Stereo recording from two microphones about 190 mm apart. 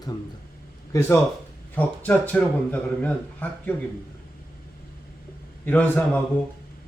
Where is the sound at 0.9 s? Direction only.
15° left (ahead or behind).